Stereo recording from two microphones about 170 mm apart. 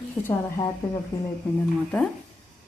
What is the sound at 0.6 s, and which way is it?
Speech, 20° left (ahead or behind).